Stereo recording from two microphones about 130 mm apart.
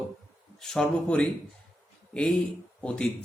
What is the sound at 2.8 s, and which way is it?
Speech, 10° left (ahead or behind).